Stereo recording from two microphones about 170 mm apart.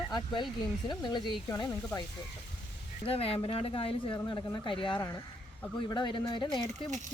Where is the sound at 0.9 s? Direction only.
25° left (ahead or behind).